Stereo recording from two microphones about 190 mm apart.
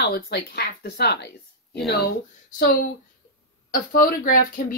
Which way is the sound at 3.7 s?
45° left (ahead or behind).